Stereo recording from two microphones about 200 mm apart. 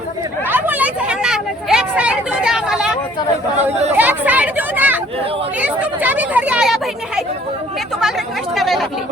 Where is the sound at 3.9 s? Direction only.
10° right (ahead or behind).